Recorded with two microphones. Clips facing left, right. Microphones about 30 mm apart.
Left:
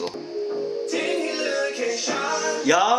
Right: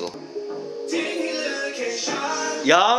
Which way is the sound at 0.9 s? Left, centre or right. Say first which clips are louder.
Right 2 dB; centre.